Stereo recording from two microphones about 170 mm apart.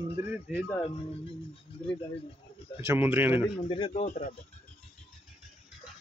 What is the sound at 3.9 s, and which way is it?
Speech, 40° left (ahead or behind).